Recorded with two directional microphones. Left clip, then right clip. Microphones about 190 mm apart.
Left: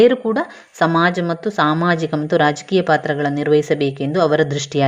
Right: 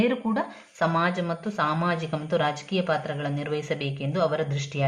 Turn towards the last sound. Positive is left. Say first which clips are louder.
# left 11 dB
turn(degrees=40)  # may be behind; listen again after turning